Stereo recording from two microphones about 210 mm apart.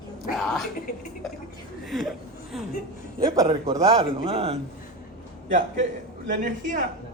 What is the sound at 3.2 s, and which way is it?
Speech, 15° right (ahead or behind).